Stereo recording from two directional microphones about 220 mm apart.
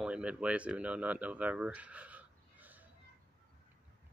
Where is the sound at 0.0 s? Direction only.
5° right (ahead or behind).